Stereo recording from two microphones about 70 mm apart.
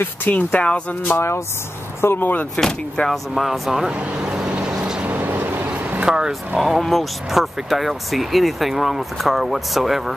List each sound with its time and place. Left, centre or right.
0.0 s speech: left
1.0 s speech: left
2.5 s speech: centre
3.9 s vehicle: centre
5.0 s vehicle: right; by 6.8 s centre
6.8 s speech: centre